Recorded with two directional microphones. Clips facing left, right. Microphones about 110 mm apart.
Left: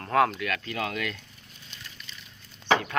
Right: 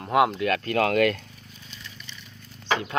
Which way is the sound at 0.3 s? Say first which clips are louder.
Right 7 dB; 35° right (ahead or behind).